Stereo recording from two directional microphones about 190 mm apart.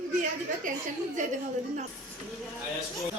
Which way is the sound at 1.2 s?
40° right (ahead or behind).